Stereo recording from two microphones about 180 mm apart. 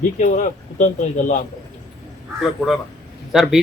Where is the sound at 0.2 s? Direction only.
45° left (ahead or behind).